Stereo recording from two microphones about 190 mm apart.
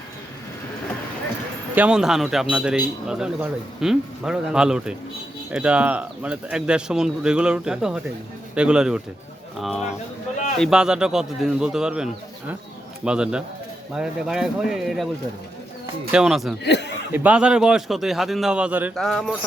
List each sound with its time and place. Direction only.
1.7 s a man's voice: 5° right (ahead or behind)
16.1 s a man's voice: 5° right (ahead or behind)
16.6 s chuckle: 65° left (ahead or behind)
17.1 s a man's voice: 10° right (ahead or behind)